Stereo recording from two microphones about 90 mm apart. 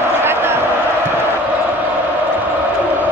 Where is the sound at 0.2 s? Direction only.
25° right (ahead or behind).